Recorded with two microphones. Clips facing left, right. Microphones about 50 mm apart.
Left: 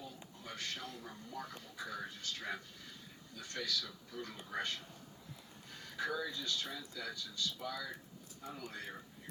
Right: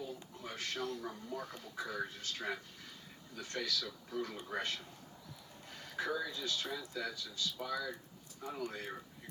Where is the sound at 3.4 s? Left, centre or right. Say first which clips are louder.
Right 2 dB; right.